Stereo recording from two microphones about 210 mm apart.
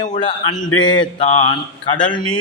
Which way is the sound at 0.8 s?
20° left (ahead or behind).